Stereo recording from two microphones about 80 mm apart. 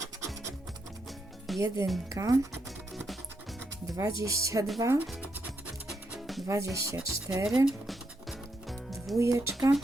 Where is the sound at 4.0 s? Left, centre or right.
Right.